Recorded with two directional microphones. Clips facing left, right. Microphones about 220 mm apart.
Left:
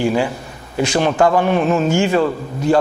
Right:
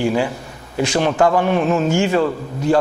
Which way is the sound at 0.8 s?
15° left (ahead or behind).